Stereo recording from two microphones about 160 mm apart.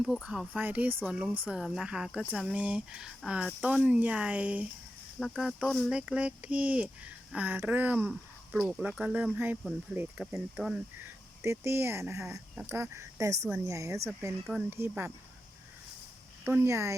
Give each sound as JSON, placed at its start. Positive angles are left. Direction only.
{"t": 0.0, "sound": "speech", "side_deg": -5}
{"t": 2.5, "sound": "speech", "side_deg": -10}
{"t": 11.4, "sound": "speech", "side_deg": -15}
{"t": 16.4, "sound": "speech", "side_deg": -15}